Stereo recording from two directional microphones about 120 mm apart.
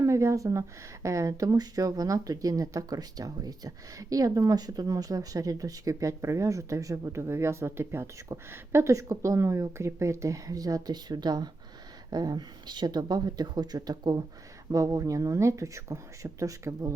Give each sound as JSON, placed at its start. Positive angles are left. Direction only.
{"t": 0.0, "sound": "speech", "side_deg": -25}